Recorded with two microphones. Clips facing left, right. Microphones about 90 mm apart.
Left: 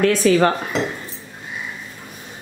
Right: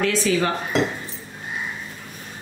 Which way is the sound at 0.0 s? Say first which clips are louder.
Left 6 dB; 50° left (ahead or behind).